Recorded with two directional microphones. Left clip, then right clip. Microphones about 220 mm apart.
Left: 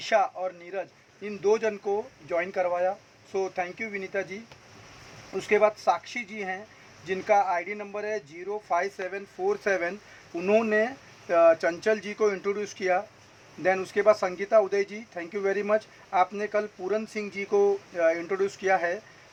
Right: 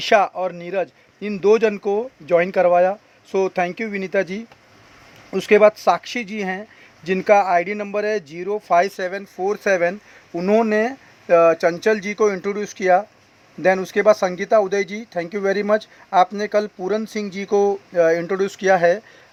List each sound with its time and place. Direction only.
0.0 s speech: 45° right (ahead or behind)